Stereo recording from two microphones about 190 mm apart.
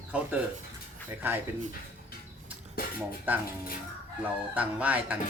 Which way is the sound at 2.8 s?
50° left (ahead or behind).